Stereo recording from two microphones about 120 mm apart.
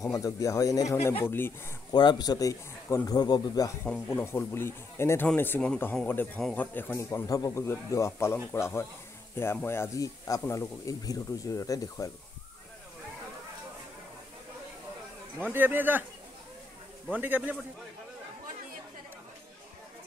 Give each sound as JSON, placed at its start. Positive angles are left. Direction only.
{"t": 0.0, "sound": "speech", "side_deg": 30}
{"t": 1.2, "sound": "speech", "side_deg": 20}
{"t": 1.9, "sound": "speech", "side_deg": 35}
{"t": 3.8, "sound": "speech", "side_deg": 20}
{"t": 15.5, "sound": "speech", "side_deg": -15}
{"t": 17.1, "sound": "speech", "side_deg": -15}